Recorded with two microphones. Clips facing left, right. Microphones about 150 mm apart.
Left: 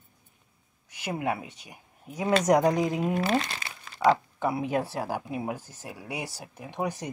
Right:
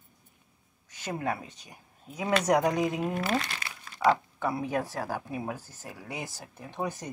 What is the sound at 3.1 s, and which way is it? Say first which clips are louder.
Crumpling: left 3 dB; 25° left (ahead or behind).